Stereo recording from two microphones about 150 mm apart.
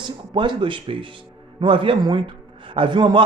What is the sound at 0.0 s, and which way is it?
A man's voice, 35° right (ahead or behind).